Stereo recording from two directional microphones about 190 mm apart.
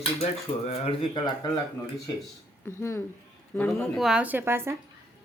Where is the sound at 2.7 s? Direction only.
15° left (ahead or behind); by 4.7 s 10° right (ahead or behind).